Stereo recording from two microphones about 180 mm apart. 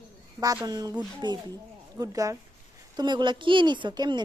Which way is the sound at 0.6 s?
20° right (ahead or behind).